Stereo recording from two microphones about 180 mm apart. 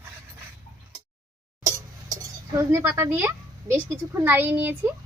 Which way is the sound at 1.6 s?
20° right (ahead or behind).